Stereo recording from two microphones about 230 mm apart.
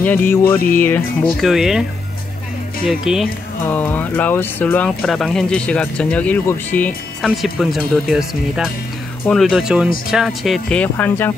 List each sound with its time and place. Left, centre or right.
0.0 s speech: centre
0.6 s music: left
1.4 s speech: centre